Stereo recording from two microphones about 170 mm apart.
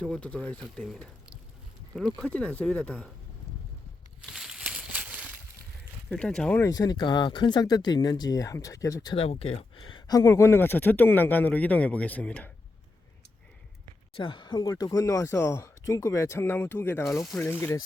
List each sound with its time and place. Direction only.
0.0 s speech: 5° left (ahead or behind)
4.2 s a sound: 5° right (ahead or behind)
6.1 s speech: 5° left (ahead or behind)
6.6 s speech: 20° left (ahead or behind)
9.1 s speech: 35° left (ahead or behind); by 12.5 s 10° left (ahead or behind)
14.2 s speech: 30° left (ahead or behind); by 17.7 s 15° left (ahead or behind)